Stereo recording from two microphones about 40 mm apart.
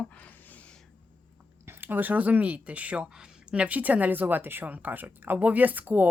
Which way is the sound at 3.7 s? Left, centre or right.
Right.